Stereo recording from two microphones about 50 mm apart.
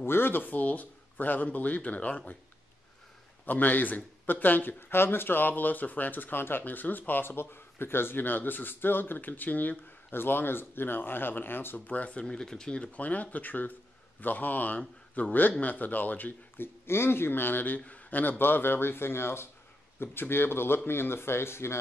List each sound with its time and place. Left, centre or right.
0.0 s speech: left
3.4 s speech: left
10.1 s speech: left
11.9 s speech: left
14.8 s speech: left
15.6 s speech: left